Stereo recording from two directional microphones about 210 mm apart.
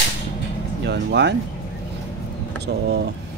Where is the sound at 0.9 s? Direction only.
55° right (ahead or behind).